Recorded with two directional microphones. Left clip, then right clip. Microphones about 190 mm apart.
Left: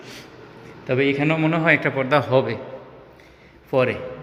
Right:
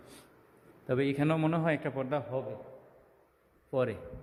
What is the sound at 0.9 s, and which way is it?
Speech, 45° right (ahead or behind).